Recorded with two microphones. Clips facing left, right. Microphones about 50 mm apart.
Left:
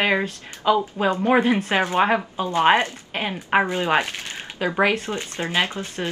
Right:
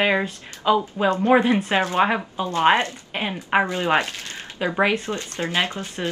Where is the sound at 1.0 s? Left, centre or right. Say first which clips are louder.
Right 1 dB; centre.